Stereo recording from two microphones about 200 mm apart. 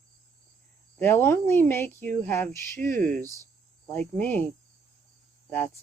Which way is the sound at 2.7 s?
40° right (ahead or behind).